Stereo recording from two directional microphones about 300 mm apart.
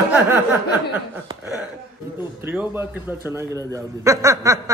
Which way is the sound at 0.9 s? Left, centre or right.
Centre.